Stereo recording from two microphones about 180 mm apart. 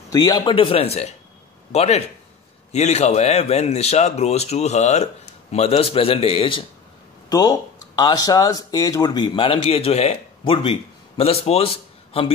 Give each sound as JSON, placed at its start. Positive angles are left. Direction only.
{"t": 0.1, "sound": "speech", "side_deg": 25}